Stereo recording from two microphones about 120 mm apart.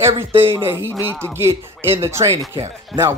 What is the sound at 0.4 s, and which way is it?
Speech, 20° right (ahead or behind).